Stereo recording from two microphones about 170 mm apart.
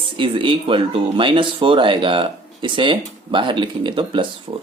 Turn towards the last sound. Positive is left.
turn(degrees=-25)  # may be behind; listen again after turning